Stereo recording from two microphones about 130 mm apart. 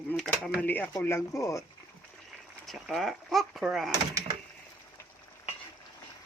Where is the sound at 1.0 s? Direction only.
20° left (ahead or behind).